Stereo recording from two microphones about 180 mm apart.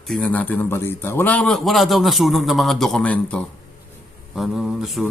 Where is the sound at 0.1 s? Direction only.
5° left (ahead or behind).